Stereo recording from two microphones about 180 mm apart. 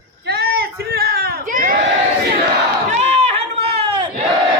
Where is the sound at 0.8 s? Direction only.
60° right (ahead or behind).